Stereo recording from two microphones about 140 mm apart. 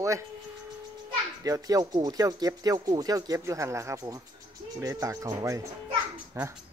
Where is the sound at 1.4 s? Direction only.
25° right (ahead or behind).